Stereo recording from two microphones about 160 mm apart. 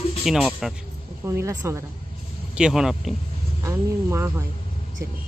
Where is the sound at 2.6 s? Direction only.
5° right (ahead or behind).